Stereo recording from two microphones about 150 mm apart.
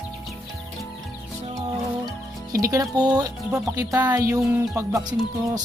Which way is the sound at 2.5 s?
25° right (ahead or behind).